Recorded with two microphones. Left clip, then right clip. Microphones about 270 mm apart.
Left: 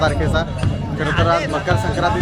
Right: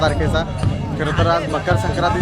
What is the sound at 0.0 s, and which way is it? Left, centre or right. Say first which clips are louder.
Speech: even; centre.